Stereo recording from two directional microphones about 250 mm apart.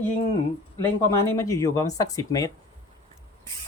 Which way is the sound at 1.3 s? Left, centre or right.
Centre.